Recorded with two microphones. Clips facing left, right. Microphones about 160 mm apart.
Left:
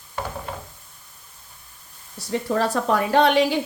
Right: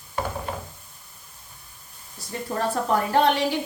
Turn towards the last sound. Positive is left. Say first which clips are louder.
# left 3 dB
turn(degrees=85)